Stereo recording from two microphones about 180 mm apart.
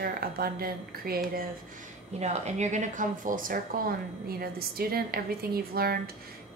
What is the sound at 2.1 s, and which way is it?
A woman's voice, 40° right (ahead or behind).